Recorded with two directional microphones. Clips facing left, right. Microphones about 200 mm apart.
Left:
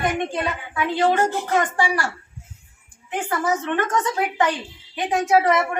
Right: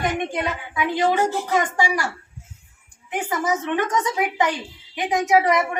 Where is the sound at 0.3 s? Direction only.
15° right (ahead or behind).